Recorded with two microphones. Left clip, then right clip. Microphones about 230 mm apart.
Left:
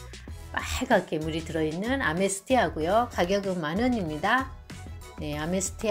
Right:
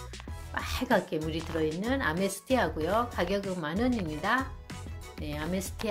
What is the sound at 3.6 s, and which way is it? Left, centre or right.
Speech, centre.